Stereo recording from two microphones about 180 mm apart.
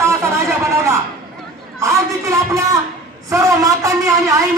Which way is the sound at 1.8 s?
15° right (ahead or behind).